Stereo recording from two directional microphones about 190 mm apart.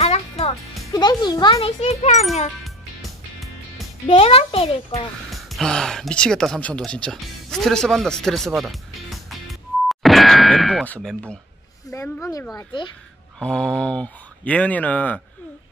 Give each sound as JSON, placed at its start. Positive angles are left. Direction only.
{"t": 0.0, "sound": "music", "side_deg": 35}
{"t": 0.9, "sound": "a child's voice", "side_deg": 20}
{"t": 2.6, "sound": "music", "side_deg": 0}
{"t": 4.1, "sound": "a child's voice", "side_deg": 30}
{"t": 5.3, "sound": "speech", "side_deg": 0}
{"t": 8.5, "sound": "music", "side_deg": 0}
{"t": 10.9, "sound": "speech", "side_deg": 5}
{"t": 11.9, "sound": "a child's voice", "side_deg": 15}
{"t": 13.4, "sound": "speech", "side_deg": 5}